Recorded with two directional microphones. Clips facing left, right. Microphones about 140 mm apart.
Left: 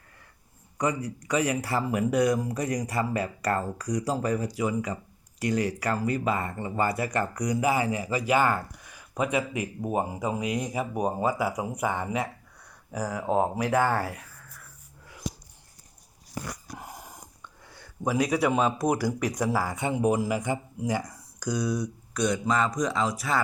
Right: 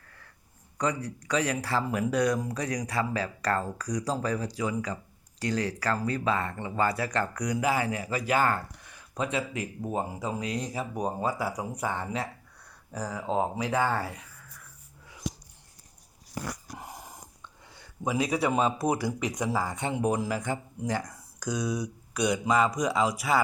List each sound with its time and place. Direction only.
0.8 s speech: 10° left (ahead or behind)
18.1 s speech: 30° right (ahead or behind)
19.6 s speech: 5° left (ahead or behind)